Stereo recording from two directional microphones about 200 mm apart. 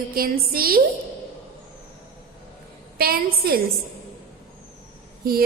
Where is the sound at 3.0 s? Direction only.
50° right (ahead or behind).